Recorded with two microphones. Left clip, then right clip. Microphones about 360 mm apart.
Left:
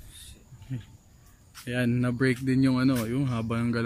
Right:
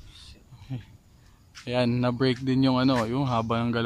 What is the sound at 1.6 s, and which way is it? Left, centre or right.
Speech, centre.